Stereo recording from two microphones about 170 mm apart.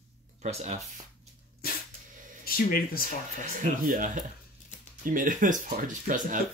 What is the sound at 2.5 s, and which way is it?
Speech, 60° left (ahead or behind).